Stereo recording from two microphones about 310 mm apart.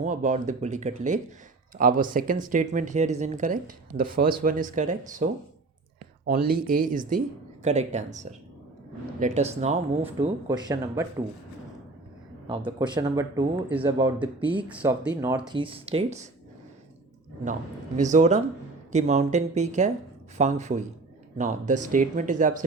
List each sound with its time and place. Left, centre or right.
0.0 s speech: right
12.5 s speech: centre
14.7 s speech: centre
17.9 s speech: right